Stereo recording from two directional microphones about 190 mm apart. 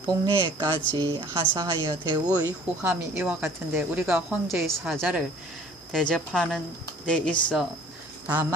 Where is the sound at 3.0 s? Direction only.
10° right (ahead or behind).